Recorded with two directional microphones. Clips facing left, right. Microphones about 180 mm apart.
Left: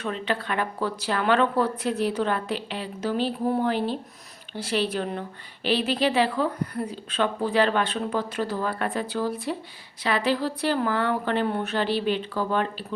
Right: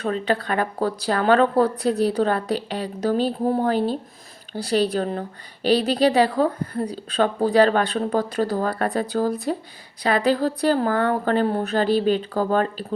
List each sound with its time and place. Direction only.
0.0 s speech: 40° right (ahead or behind)